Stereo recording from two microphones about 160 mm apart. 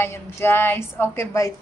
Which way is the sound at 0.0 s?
15° left (ahead or behind).